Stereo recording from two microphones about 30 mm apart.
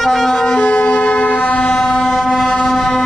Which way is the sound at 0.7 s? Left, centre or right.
Left.